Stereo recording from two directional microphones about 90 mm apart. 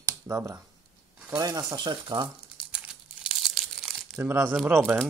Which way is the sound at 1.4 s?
50° right (ahead or behind).